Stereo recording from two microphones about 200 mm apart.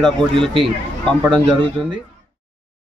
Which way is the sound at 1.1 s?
5° left (ahead or behind).